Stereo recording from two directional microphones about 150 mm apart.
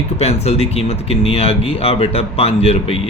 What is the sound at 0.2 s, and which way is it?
A man's voice, 45° left (ahead or behind).